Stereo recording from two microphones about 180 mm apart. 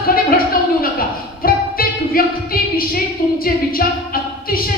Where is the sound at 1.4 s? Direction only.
55° left (ahead or behind).